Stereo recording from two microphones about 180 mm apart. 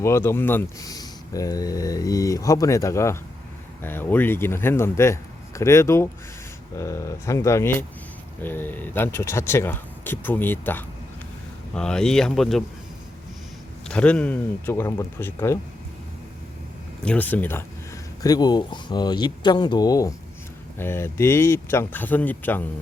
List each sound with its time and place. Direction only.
0.0 s speech: 15° left (ahead or behind)
13.8 s speech: 5° left (ahead or behind)
17.0 s speech: 10° left (ahead or behind)